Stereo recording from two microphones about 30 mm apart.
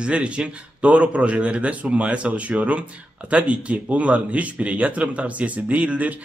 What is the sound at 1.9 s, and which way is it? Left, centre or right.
A man's voice, right.